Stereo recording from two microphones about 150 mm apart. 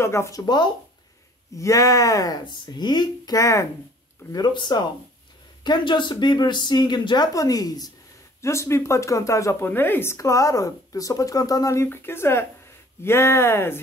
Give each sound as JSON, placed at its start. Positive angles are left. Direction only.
{"t": 0.0, "sound": "speech", "side_deg": 20}